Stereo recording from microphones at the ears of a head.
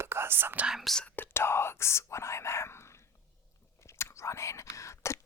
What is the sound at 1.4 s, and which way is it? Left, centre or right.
Speech, left.